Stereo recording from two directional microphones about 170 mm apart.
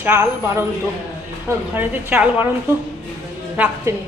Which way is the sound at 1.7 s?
10° right (ahead or behind).